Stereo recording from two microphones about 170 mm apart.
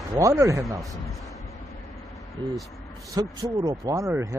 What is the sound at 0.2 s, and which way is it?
Speech, 15° right (ahead or behind).